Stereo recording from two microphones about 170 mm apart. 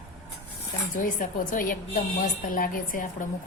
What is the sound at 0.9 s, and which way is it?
A woman's voice, 50° left (ahead or behind).